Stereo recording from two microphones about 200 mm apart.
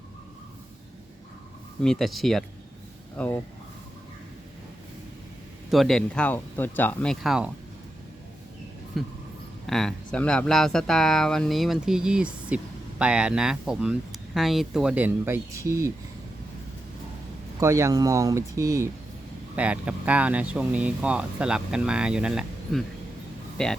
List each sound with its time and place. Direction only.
1.8 s speech: centre (ahead or behind)
5.7 s speech: centre (ahead or behind)
8.9 s speech: centre (ahead or behind)
17.6 s speech: 15° right (ahead or behind); by 23.7 s 5° left (ahead or behind)